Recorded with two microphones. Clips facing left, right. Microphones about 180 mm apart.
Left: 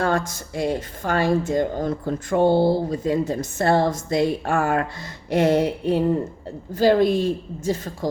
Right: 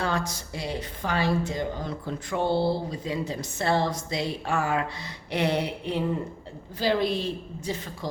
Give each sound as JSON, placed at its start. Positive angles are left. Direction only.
{"t": 0.0, "sound": "speech", "side_deg": 50}